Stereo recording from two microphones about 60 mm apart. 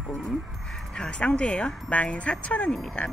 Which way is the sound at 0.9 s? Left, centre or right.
Centre.